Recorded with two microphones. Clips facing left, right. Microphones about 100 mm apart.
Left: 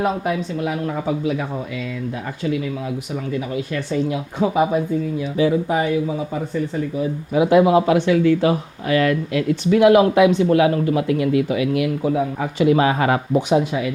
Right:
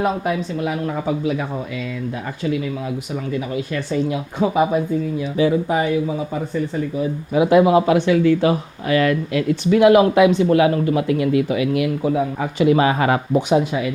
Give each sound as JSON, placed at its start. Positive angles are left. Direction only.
{"t": 0.0, "sound": "speech", "side_deg": -15}